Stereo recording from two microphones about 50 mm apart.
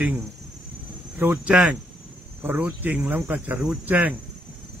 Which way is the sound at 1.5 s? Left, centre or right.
Centre.